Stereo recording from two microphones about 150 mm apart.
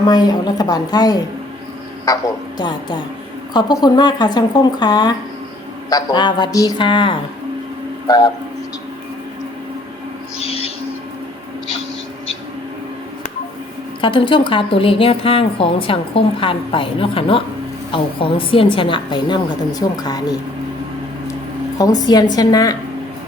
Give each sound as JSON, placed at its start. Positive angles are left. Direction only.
{"t": 0.0, "sound": "a woman's voice", "side_deg": 25}
{"t": 10.3, "sound": "owl", "side_deg": 40}
{"t": 14.0, "sound": "a woman's voice", "side_deg": 35}
{"t": 21.8, "sound": "a woman's voice", "side_deg": 25}